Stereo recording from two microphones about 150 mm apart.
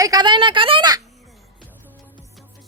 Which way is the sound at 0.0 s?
25° right (ahead or behind).